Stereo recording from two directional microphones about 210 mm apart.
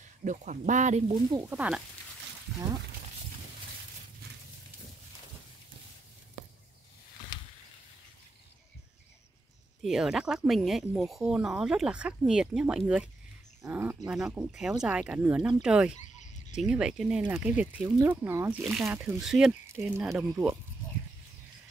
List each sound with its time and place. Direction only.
0.2 s speech: 35° right (ahead or behind)
1.5 s speech: 5° right (ahead or behind)
9.8 s speech: centre (ahead or behind)